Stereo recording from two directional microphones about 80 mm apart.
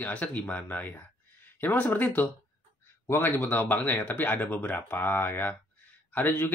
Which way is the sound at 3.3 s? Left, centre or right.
Left.